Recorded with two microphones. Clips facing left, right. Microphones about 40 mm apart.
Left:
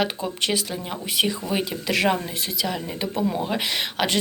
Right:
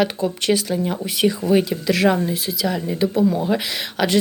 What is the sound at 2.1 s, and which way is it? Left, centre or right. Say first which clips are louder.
Speech: right 5 dB; centre.